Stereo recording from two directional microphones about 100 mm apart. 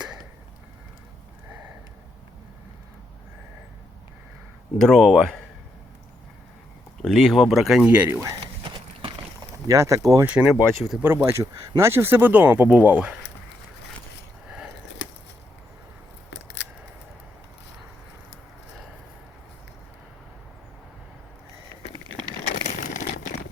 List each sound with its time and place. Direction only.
4.8 s speech: 5° left (ahead or behind)
7.0 s speech: 5° left (ahead or behind)
7.9 s speech: 15° right (ahead or behind)
9.6 s speech: 35° right (ahead or behind)
10.2 s speech: 10° right (ahead or behind)
10.5 s speech: centre (ahead or behind)
11.0 s speech: 25° right (ahead or behind)